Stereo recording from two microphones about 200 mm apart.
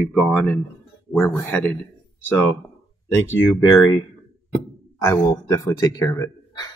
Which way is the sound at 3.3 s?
10° left (ahead or behind).